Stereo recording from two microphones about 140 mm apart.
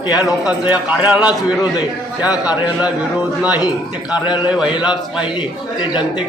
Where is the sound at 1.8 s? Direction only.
30° left (ahead or behind).